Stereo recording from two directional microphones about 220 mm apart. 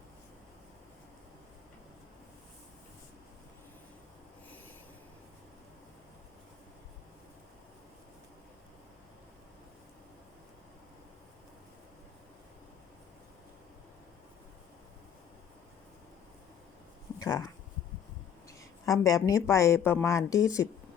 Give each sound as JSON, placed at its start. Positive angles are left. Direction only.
{"t": 17.2, "sound": "a woman's voice", "side_deg": 15}